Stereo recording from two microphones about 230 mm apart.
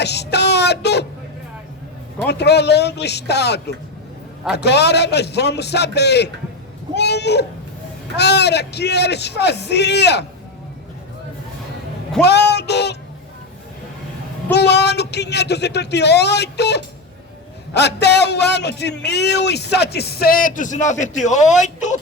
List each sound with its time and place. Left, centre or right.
0.0 s a sound: left
2.2 s a man's voice: left
12.2 s a man's voice: left
14.5 s a man's voice: left